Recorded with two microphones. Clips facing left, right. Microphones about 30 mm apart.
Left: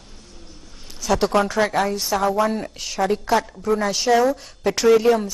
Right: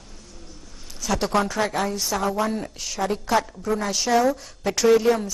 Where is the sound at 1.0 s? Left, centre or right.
Centre.